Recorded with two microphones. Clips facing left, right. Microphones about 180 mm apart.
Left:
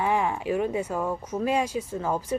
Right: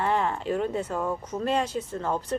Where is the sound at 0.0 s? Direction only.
10° left (ahead or behind).